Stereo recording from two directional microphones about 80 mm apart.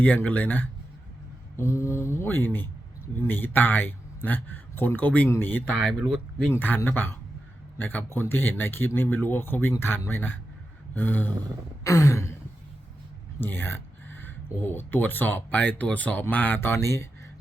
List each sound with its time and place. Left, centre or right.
0.0 s a man's voice: left
1.5 s mantra: left
3.2 s a man's voice: left
11.8 s mantra: left
13.4 s a man's voice: left
16.6 s mantra: left